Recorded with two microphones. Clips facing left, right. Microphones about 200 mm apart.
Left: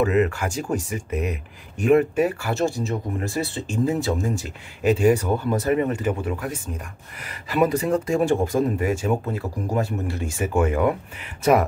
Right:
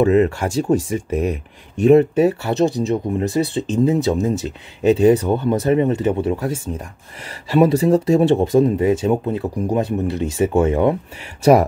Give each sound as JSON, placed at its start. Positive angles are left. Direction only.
{"t": 0.0, "sound": "speech", "side_deg": -30}